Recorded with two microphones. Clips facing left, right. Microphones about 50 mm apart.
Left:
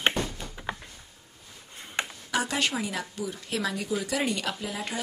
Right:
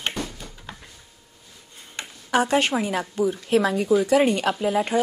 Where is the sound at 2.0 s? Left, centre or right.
Left.